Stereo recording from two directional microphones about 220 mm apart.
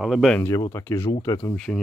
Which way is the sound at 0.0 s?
Centre (ahead or behind).